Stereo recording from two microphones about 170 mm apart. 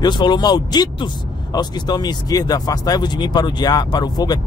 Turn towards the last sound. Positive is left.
turn(degrees=25)  # may be behind; listen again after turning